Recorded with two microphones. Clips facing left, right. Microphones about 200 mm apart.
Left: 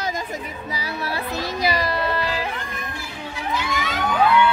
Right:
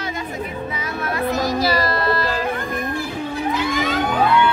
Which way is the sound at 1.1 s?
30° left (ahead or behind).